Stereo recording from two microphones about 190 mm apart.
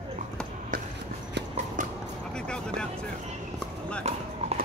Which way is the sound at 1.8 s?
45° right (ahead or behind).